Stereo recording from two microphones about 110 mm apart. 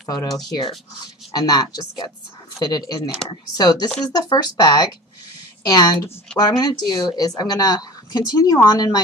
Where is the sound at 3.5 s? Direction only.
40° left (ahead or behind).